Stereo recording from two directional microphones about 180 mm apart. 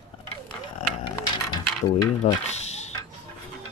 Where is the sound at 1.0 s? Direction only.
25° left (ahead or behind).